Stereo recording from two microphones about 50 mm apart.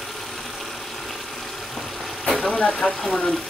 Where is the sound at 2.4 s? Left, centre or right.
Left.